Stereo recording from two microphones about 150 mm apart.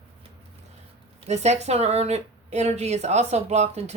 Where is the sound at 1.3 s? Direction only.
45° right (ahead or behind).